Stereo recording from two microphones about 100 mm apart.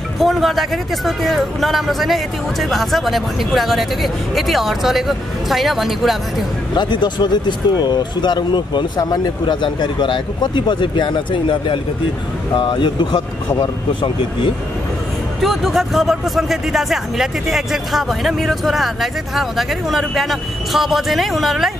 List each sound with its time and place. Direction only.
0.2 s speech: centre (ahead or behind)
6.7 s speech: 50° left (ahead or behind)
15.4 s speech: centre (ahead or behind)